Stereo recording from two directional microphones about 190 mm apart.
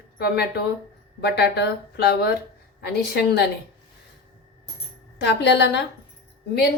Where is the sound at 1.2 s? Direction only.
60° left (ahead or behind).